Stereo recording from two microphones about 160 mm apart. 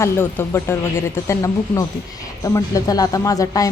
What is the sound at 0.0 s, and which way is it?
A woman's voice, 15° left (ahead or behind).